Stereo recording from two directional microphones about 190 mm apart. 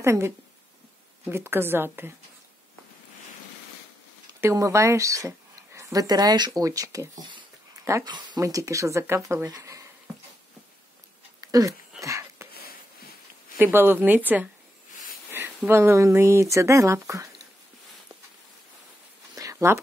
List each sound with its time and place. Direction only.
0.0 s speech: 15° right (ahead or behind)
1.3 s speech: 10° right (ahead or behind)
4.3 s speech: 15° right (ahead or behind)
11.4 s a sound: 20° right (ahead or behind)
13.6 s speech: 10° right (ahead or behind)
19.3 s a sound: 15° right (ahead or behind)